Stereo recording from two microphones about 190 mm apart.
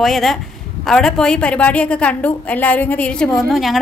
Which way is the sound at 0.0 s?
Centre (ahead or behind).